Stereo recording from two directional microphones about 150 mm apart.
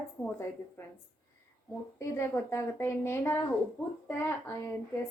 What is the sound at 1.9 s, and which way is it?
A woman's voice, 15° left (ahead or behind).